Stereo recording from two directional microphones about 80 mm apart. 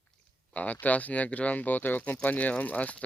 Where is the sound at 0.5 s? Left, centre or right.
Centre.